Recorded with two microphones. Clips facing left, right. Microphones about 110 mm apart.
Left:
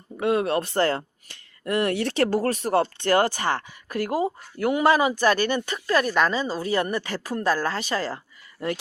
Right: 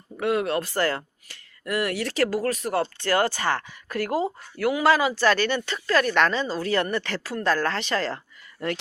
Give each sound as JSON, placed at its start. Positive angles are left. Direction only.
{"t": 0.2, "sound": "speech", "side_deg": 25}